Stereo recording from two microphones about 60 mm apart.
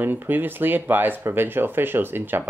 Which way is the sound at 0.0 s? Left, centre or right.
Right.